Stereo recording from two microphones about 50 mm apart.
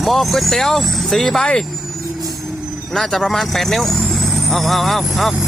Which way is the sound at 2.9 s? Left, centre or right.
Centre.